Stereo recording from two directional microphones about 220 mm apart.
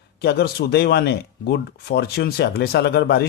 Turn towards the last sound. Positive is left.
turn(degrees=50)  # may be behind; listen again after turning